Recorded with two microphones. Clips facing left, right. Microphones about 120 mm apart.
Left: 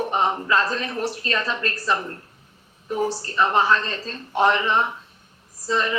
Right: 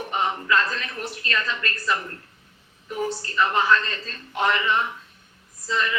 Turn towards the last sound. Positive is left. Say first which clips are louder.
# left 3 dB
turn(degrees=35)  # may be behind; listen again after turning